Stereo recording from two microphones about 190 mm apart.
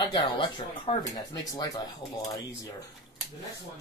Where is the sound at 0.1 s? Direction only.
25° left (ahead or behind).